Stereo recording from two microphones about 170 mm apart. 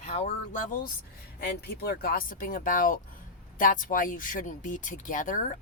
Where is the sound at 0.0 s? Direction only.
45° left (ahead or behind).